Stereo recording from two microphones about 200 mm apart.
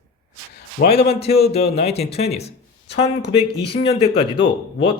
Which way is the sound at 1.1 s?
30° left (ahead or behind).